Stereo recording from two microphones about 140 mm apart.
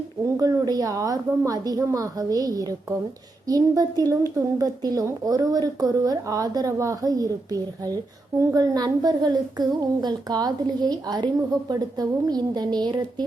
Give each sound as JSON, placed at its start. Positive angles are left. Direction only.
{"t": 0.3, "sound": "a woman's voice", "side_deg": -25}